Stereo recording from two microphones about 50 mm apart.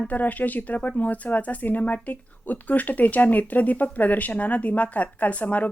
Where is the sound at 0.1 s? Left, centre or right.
Left.